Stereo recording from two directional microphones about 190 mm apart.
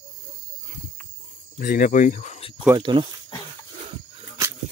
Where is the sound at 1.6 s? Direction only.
50° left (ahead or behind).